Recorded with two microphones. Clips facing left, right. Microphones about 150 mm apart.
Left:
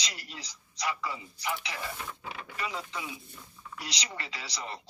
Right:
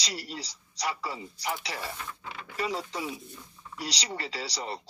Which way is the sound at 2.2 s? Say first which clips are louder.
Left 1 dB; 10° left (ahead or behind).